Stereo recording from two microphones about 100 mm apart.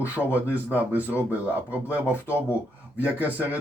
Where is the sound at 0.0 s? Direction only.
15° right (ahead or behind).